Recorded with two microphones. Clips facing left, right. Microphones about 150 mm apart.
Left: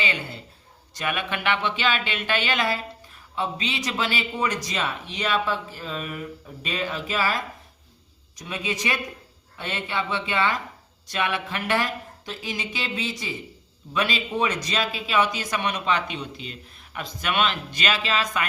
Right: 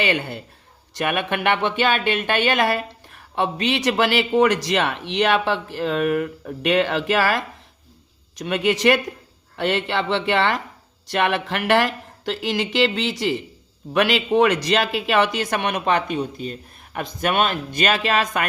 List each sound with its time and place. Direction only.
0.0 s speech: 65° right (ahead or behind)